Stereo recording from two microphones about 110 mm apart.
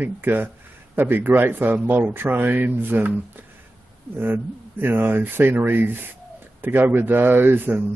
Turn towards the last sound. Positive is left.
turn(degrees=-20)  # may be behind; listen again after turning